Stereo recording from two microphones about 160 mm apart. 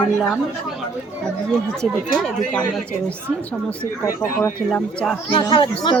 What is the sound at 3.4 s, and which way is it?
Speech, 10° left (ahead or behind).